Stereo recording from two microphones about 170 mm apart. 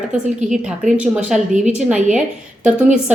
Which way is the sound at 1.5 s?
45° right (ahead or behind).